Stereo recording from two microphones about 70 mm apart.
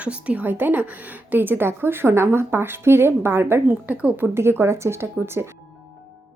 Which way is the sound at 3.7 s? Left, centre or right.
Right.